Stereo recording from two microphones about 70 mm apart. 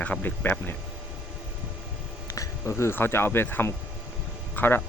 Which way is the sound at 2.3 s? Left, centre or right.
Left.